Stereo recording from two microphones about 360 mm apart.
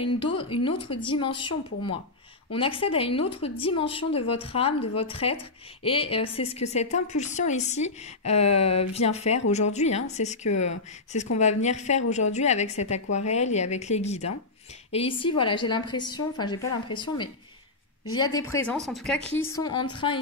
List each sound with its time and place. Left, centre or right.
0.0 s a woman's voice: centre
19.5 s speech: centre